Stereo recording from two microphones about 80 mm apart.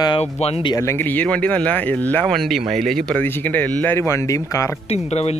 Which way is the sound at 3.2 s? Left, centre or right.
Left.